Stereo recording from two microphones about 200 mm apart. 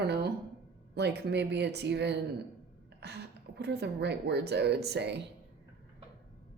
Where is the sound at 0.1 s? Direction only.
55° right (ahead or behind).